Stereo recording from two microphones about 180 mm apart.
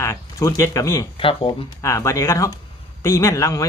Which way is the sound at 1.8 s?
15° left (ahead or behind).